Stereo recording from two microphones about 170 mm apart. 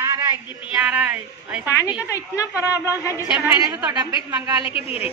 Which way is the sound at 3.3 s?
15° right (ahead or behind).